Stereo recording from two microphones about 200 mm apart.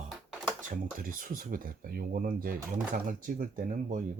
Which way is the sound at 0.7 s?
45° right (ahead or behind).